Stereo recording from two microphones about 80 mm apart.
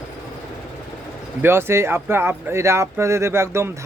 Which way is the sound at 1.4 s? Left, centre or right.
Right.